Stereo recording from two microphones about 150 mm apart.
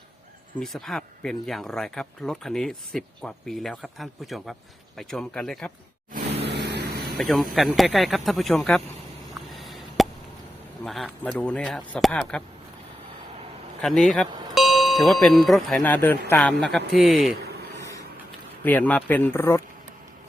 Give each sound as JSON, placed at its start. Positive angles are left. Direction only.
{"t": 0.6, "sound": "speech", "side_deg": 0}
{"t": 6.1, "sound": "vehicle", "side_deg": -90}
{"t": 7.2, "sound": "speech", "side_deg": 0}
{"t": 9.5, "sound": "a sound", "side_deg": 0}
{"t": 10.8, "sound": "speech", "side_deg": 0}
{"t": 13.8, "sound": "speech", "side_deg": 5}
{"t": 18.6, "sound": "speech", "side_deg": 10}